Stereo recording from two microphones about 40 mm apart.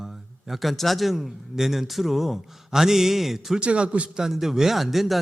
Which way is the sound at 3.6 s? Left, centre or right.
Right.